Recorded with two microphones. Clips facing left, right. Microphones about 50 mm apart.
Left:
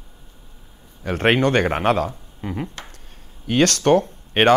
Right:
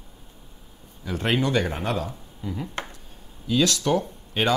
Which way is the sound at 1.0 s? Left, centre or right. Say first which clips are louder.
Left 7 dB; left.